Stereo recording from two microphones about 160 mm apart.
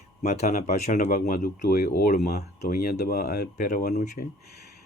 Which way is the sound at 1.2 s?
65° left (ahead or behind).